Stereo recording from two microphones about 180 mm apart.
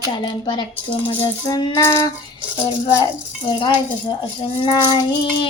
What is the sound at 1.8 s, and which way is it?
Child singing, 15° left (ahead or behind).